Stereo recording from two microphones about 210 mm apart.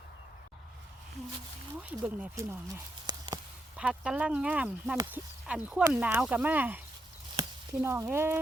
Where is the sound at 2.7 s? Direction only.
20° right (ahead or behind).